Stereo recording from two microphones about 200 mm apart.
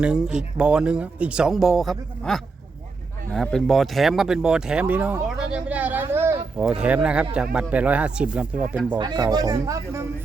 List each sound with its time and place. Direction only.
0.0 s speech: 5° right (ahead or behind)
9.0 s speech: 20° right (ahead or behind)